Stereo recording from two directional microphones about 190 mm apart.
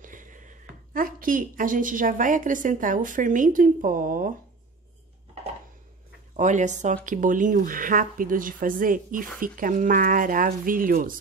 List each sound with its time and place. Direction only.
0.0 s a woman's voice: 45° right (ahead or behind)
6.3 s speech: 40° right (ahead or behind)